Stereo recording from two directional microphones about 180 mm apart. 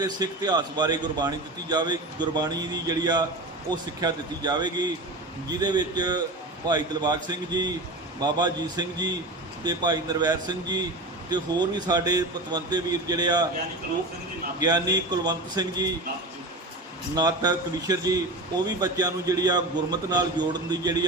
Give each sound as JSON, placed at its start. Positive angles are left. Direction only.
{"t": 0.0, "sound": "a man's voice", "side_deg": -25}
{"t": 14.6, "sound": "a man's voice", "side_deg": -20}
{"t": 17.2, "sound": "a man's voice", "side_deg": -20}